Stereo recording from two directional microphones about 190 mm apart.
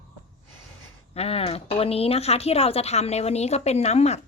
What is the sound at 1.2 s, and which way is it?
A woman's voice, 30° left (ahead or behind).